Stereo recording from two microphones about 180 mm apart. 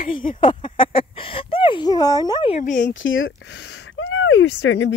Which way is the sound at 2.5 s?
45° left (ahead or behind).